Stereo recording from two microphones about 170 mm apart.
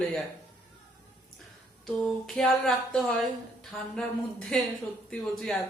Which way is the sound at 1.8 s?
Centre (ahead or behind).